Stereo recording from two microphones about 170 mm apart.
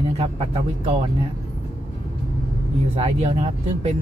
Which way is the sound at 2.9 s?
35° right (ahead or behind).